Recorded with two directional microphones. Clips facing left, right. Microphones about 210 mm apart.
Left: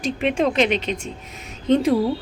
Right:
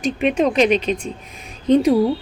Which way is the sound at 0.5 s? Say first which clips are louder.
Right 4 dB; 25° left (ahead or behind).